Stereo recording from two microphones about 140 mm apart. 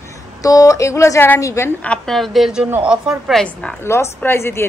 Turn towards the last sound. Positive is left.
turn(degrees=20)  # may be behind; listen again after turning